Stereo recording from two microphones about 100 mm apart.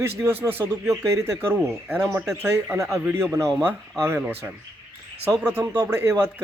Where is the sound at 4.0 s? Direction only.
25° right (ahead or behind).